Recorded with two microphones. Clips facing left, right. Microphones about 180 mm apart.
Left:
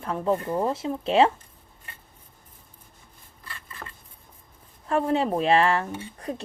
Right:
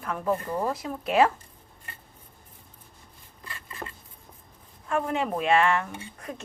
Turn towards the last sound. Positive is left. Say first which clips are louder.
# left 5 dB
turn(degrees=35)  # may be behind; listen again after turning